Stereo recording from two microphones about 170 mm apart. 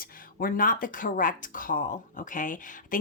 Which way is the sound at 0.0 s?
55° left (ahead or behind).